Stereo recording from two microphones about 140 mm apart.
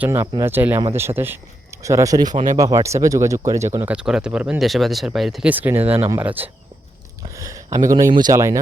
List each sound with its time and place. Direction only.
0.0 s speech: 20° right (ahead or behind)
3.9 s speech: 5° right (ahead or behind)
5.5 s speech: 15° right (ahead or behind)
7.2 s a sound: 25° right (ahead or behind)
7.9 s speech: 25° right (ahead or behind)